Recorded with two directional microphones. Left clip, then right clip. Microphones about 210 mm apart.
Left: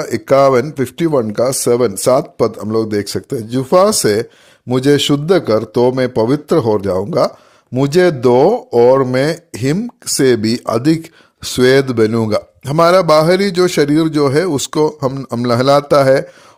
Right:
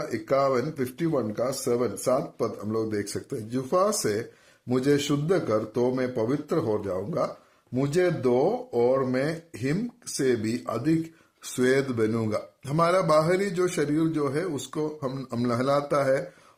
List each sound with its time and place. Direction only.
0.0 s a man's voice: 50° left (ahead or behind)